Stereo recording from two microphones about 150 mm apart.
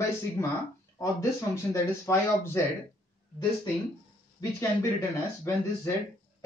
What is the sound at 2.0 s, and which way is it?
Speech, 20° left (ahead or behind).